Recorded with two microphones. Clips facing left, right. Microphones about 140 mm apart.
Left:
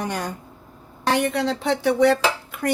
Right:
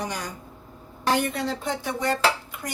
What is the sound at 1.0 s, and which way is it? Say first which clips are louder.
Speech: left 3 dB; 70° left (ahead or behind).